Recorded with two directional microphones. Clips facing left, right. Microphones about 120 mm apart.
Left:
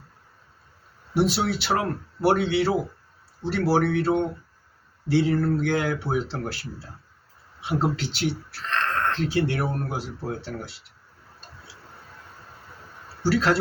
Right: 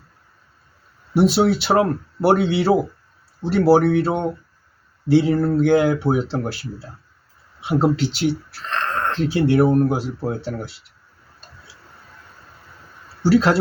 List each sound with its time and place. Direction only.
1.1 s speech: 25° right (ahead or behind)
13.2 s speech: 20° right (ahead or behind)